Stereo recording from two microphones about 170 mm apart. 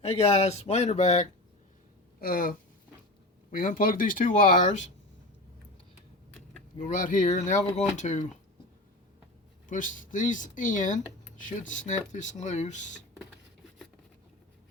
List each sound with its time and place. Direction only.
0.0 s speech: 40° left (ahead or behind)
2.2 s speech: 60° left (ahead or behind)
6.7 s speech: 50° left (ahead or behind)
9.6 s speech: 50° left (ahead or behind)